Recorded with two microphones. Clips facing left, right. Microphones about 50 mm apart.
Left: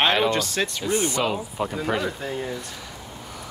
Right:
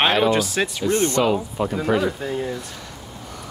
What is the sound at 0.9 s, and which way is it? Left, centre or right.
Speech, centre.